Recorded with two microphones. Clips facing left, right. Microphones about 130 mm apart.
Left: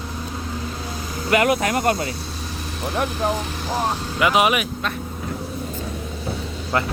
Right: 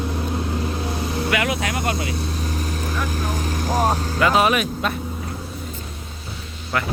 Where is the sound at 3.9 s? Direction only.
40° right (ahead or behind).